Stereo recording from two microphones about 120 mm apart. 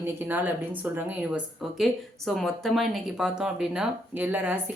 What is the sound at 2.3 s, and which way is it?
Speech, centre (ahead or behind).